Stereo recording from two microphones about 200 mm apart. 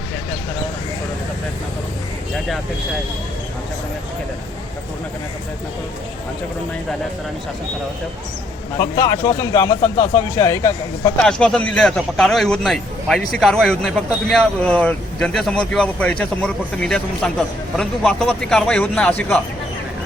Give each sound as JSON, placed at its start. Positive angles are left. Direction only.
{"t": 8.8, "sound": "speech", "side_deg": 20}
{"t": 11.2, "sound": "speech", "side_deg": 5}